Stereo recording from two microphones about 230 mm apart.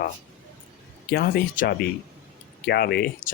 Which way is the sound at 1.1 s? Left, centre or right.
Left.